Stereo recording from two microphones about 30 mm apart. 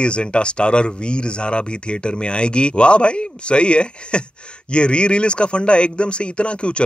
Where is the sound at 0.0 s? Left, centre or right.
Left.